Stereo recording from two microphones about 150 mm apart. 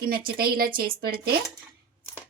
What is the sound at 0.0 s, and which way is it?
Speech, 80° right.